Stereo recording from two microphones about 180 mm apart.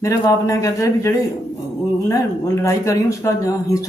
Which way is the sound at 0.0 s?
15° left (ahead or behind).